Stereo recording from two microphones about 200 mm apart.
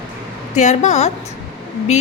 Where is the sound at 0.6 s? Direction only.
35° left (ahead or behind).